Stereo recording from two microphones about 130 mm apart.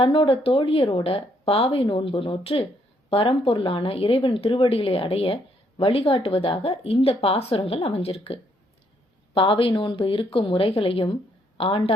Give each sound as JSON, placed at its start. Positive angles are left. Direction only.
{"t": 0.0, "sound": "speech", "side_deg": 45}